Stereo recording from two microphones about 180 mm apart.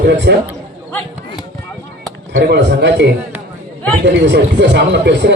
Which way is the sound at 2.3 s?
75° right (ahead or behind).